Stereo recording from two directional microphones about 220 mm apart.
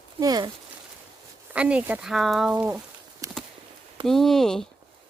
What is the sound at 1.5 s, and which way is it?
Speech, 5° right (ahead or behind).